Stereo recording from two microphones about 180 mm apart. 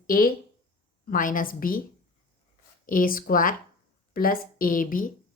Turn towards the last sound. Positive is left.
turn(degrees=50)  # may be behind; listen again after turning